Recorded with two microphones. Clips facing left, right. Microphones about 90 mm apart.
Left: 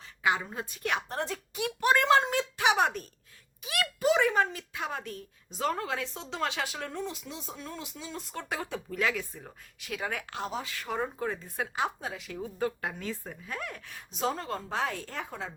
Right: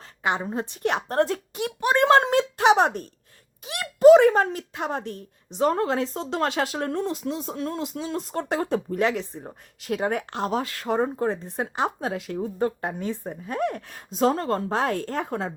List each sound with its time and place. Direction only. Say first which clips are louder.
0.0 s a sound: right 2 dB; 40° right (ahead or behind)
0.3 s speech: right 8 dB; 30° right (ahead or behind)
4.0 s speech: right 12 dB; 45° right (ahead or behind); by 5.7 s 30° right (ahead or behind)
5.7 s speech: right 9 dB; 40° right (ahead or behind)
7.5 s speech: right 12 dB; 60° right (ahead or behind)
7.8 s speech: right 11 dB; 45° right (ahead or behind)
10.4 s speech: right 10 dB; 55° right (ahead or behind)
10.8 s speech: right 8 dB; 40° right (ahead or behind)
11.9 s speech: right 9 dB; 50° right (ahead or behind)